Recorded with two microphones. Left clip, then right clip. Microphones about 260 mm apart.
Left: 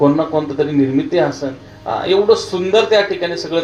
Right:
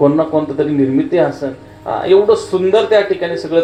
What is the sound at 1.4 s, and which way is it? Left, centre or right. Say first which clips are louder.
Speech: right 1 dB; right.